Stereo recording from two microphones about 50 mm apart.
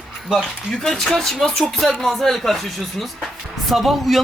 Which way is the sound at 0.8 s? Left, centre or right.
Centre.